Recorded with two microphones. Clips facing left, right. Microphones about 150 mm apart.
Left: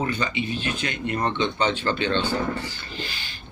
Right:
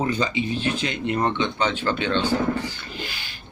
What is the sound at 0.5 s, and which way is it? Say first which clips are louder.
Speech: right 3 dB; 30° right (ahead or behind).